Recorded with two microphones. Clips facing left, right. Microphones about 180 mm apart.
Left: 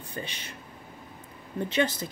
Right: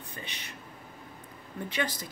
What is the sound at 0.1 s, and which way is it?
Speech, 30° left (ahead or behind).